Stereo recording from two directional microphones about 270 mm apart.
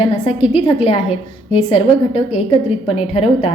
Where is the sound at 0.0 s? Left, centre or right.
Left.